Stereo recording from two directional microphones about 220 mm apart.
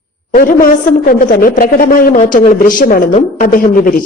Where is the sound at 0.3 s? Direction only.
40° left (ahead or behind).